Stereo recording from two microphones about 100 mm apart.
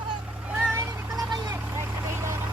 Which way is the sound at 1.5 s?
30° right (ahead or behind).